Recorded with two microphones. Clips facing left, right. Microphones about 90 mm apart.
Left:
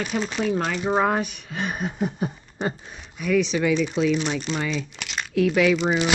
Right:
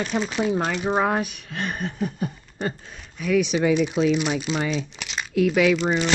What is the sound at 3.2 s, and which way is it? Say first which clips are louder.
Speech: right 1 dB; 5° right (ahead or behind).